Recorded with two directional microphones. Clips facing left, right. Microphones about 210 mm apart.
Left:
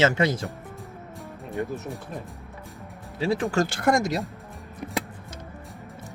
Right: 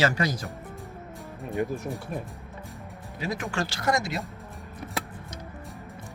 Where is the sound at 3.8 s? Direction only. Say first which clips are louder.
Left 3 dB; 50° left (ahead or behind).